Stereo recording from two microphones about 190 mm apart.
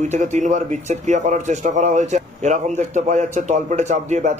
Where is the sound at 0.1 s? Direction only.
40° right (ahead or behind).